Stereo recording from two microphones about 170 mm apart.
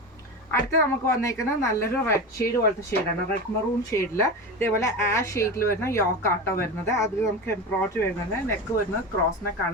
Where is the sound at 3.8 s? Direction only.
20° left (ahead or behind).